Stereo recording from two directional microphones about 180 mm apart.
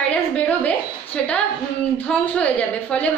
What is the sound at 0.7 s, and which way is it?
A woman's voice, 5° left (ahead or behind).